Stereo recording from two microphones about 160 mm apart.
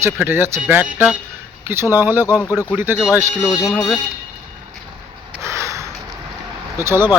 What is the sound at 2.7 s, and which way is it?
Speech, 15° right (ahead or behind).